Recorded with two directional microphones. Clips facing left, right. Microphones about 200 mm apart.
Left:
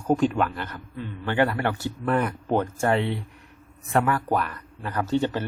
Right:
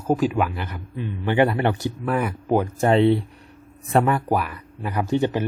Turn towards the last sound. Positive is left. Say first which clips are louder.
# right 3 dB
turn(degrees=-15)  # may be behind; listen again after turning